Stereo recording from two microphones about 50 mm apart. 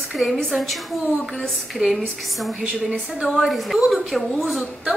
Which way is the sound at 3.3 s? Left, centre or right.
Centre.